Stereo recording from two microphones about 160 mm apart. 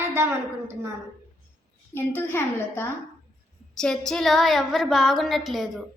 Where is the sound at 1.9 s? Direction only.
15° left (ahead or behind).